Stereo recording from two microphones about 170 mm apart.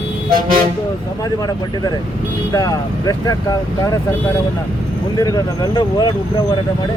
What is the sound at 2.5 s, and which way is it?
Speech, 20° left (ahead or behind).